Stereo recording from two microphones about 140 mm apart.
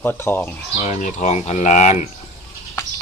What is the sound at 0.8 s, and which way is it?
Speech, 60° left (ahead or behind).